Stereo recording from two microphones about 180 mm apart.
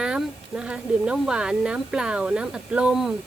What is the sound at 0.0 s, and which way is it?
Speech, 5° right (ahead or behind).